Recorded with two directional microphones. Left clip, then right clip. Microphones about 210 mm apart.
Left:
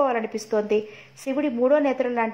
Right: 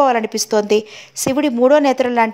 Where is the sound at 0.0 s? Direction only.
50° right (ahead or behind).